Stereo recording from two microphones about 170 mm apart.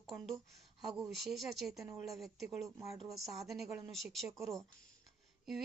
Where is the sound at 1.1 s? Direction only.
Centre (ahead or behind).